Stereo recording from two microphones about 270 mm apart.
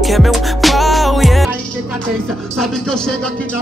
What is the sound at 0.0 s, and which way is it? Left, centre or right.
Music, centre.